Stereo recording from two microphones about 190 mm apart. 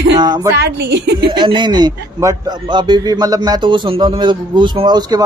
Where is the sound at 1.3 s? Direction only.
25° right (ahead or behind).